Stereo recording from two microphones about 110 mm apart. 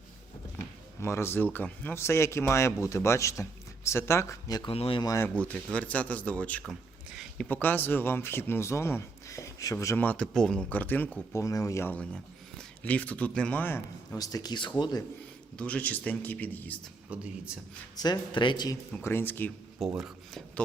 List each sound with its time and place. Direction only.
0.9 s speech: 20° left (ahead or behind)
4.6 s speech: 55° left (ahead or behind)
4.9 s speech: 35° left (ahead or behind)
5.2 s a man's voice: 15° left (ahead or behind)
7.2 s a sound: 5° left (ahead or behind)
7.5 s speech: 20° left (ahead or behind)
11.3 s speech: 30° left (ahead or behind)
11.9 s speech: 10° left (ahead or behind)
14.2 s speech: 35° left (ahead or behind)
15.5 s a man's voice: 10° left (ahead or behind)
17.1 s a man's voice: 10° right (ahead or behind)
18.0 s speech: 40° left (ahead or behind)
19.0 s speech: 20° left (ahead or behind)
19.8 s speech: centre (ahead or behind)